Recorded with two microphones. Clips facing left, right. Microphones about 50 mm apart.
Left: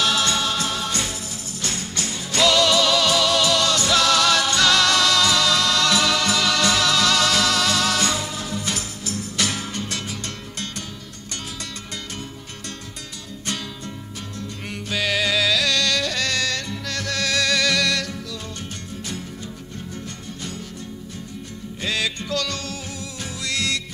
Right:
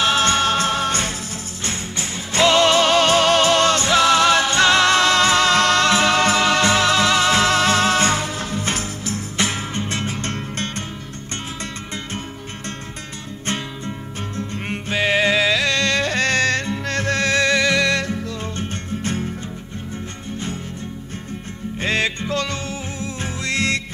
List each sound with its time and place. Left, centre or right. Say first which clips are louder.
0.0 s jingle bell: right 4 dB; right
1.6 s music: right 1 dB; right
13.5 s music: right 4 dB; right
21.8 s music: right 4 dB; right